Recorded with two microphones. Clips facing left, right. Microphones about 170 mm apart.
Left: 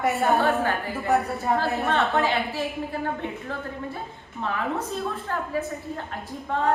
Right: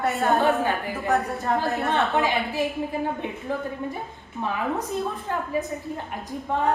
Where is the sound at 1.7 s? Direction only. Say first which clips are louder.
Even; 15° right (ahead or behind).